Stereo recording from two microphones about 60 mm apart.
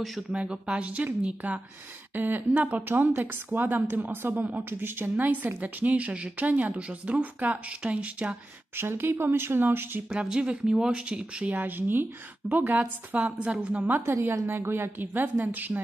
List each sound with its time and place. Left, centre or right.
0.3 s a woman's voice: centre
8.7 s a woman's voice: right
10.0 s speech: centre
11.5 s a woman's voice: right
14.0 s a woman's voice: right